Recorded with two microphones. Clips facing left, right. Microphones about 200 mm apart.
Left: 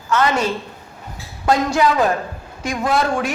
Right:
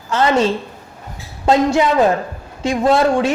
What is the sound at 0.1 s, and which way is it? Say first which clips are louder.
A woman's voice: right 3 dB; 30° right (ahead or behind).